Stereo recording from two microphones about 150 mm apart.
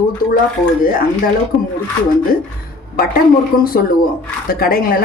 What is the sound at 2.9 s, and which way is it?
Speech, 80° left.